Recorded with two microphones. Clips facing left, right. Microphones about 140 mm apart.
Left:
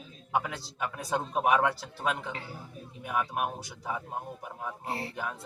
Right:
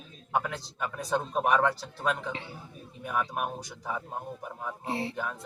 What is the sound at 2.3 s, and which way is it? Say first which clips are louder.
Speech: right 2 dB; 20° right (ahead or behind).